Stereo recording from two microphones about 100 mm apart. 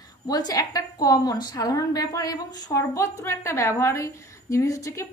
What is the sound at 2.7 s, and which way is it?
A woman's voice, 30° left (ahead or behind).